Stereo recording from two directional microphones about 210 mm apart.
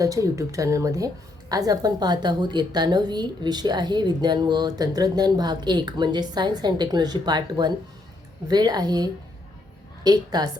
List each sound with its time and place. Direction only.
0.0 s a woman's voice: 15° right (ahead or behind)